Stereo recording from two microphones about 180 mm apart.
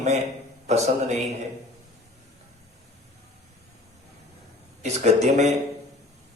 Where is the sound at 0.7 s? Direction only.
40° right (ahead or behind).